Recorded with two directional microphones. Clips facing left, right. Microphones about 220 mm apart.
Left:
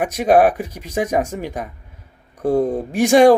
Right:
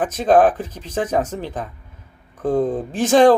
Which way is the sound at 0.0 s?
10° left (ahead or behind).